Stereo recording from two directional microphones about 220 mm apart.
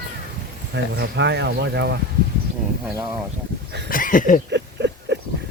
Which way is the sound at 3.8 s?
40° left (ahead or behind).